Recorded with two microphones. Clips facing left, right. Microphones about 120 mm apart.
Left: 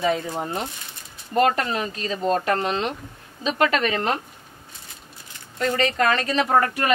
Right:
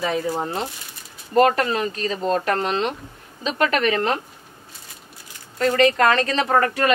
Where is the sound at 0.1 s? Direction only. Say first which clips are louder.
Right 2 dB; 25° right (ahead or behind).